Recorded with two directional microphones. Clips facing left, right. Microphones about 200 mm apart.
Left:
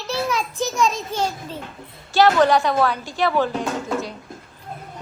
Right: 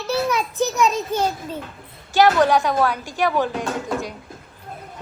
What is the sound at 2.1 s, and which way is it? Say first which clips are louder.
A woman's voice: even; 10° right (ahead or behind).